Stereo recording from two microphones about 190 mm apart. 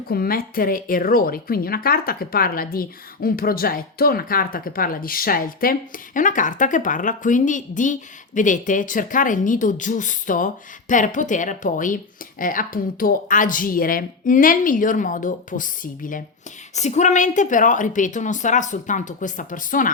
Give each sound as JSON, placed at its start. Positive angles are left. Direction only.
{"t": 0.1, "sound": "a woman's voice", "side_deg": 50}